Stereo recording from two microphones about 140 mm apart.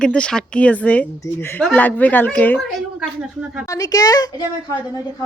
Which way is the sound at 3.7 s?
25° left (ahead or behind).